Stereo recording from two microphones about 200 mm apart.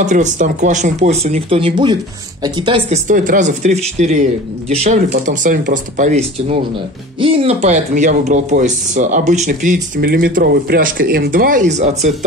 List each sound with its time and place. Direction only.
0.0 s speech: 35° right (ahead or behind)
3.1 s speech: 40° right (ahead or behind)